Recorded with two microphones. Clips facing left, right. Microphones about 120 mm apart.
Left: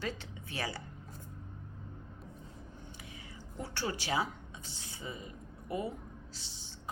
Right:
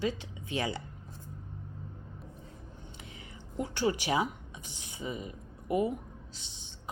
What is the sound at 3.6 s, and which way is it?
A woman's voice, 15° right (ahead or behind).